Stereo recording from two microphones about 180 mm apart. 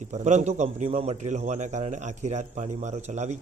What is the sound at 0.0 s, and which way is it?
A man's voice, 40° right (ahead or behind).